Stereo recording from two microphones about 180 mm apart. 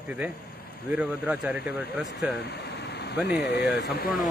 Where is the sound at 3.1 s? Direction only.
70° left (ahead or behind).